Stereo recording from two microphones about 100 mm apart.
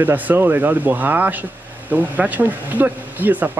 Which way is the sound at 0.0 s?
20° right (ahead or behind).